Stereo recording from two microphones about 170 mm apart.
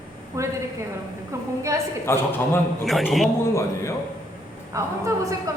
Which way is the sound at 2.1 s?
15° left (ahead or behind).